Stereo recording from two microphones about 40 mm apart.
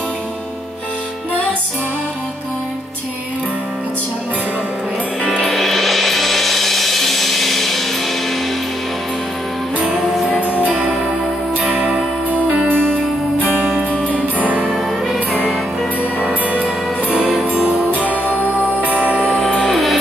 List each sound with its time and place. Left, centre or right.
5.4 s music: centre
11.7 s music: right
12.6 s music: right
14.2 s music: right
16.4 s music: right
19.6 s music: centre